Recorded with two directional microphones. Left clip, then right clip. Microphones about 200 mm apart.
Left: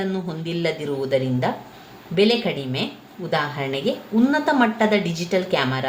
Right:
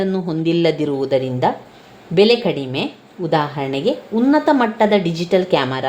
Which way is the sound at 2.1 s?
40° right (ahead or behind).